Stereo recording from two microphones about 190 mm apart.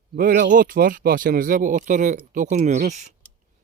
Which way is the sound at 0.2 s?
45° right (ahead or behind).